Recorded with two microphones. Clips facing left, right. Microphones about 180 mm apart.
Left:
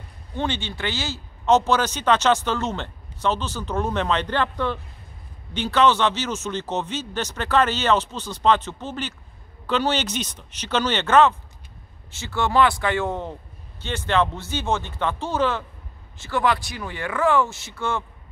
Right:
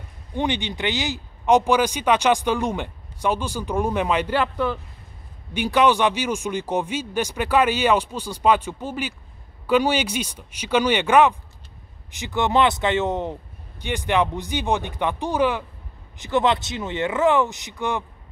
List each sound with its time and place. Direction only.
0.4 s speech: 15° right (ahead or behind)